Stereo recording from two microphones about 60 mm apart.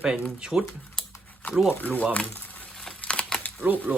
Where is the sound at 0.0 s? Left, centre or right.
Centre.